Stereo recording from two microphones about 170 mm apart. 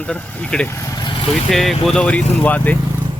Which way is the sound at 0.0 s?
5° left (ahead or behind).